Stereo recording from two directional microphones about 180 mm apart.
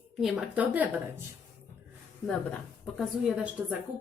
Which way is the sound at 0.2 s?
5° right (ahead or behind).